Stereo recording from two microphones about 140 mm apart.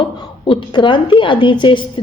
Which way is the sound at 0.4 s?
35° left (ahead or behind).